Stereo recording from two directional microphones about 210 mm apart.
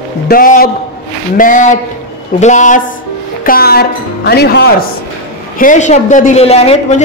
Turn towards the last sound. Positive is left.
turn(degrees=30)  # may be behind; listen again after turning